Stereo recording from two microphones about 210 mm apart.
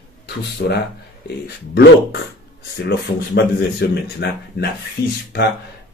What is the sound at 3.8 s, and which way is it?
A man's voice, 50° left (ahead or behind).